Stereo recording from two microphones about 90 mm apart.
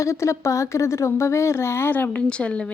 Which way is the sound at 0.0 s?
35° left (ahead or behind).